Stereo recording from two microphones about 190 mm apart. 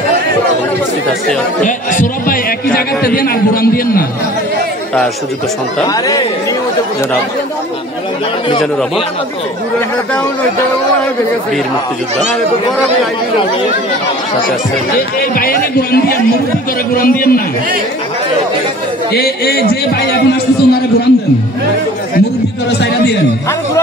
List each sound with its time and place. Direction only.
1.6 s a man's voice: 45° left (ahead or behind)
5.9 s speech: 20° left (ahead or behind)
15.0 s a man's voice: 50° left (ahead or behind)
19.1 s a man's voice: 55° left (ahead or behind)